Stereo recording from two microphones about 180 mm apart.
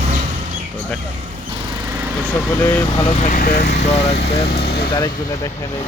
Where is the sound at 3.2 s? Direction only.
50° left (ahead or behind).